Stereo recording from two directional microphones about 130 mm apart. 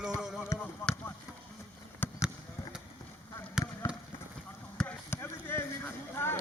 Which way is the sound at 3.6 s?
5° right (ahead or behind).